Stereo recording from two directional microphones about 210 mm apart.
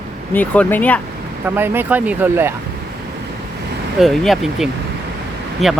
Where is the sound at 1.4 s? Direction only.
10° right (ahead or behind).